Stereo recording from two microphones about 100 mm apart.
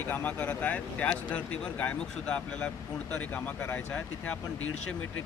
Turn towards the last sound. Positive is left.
turn(degrees=15)  # may be behind; listen again after turning